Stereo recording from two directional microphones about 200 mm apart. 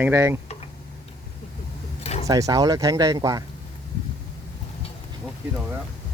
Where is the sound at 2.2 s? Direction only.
15° right (ahead or behind).